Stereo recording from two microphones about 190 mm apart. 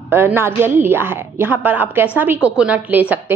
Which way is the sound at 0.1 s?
10° right (ahead or behind).